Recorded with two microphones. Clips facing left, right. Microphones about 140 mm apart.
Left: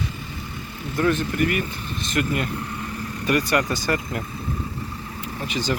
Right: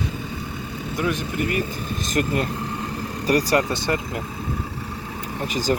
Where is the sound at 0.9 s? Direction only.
15° right (ahead or behind).